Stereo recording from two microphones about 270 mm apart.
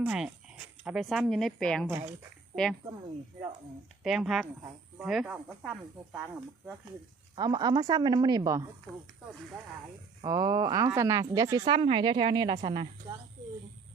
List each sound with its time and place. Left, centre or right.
0.0 s speech: centre
4.0 s speech: centre
7.3 s speech: centre
10.2 s speech: centre